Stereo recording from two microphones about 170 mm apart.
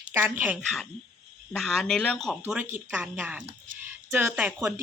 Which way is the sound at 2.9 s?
10° right (ahead or behind).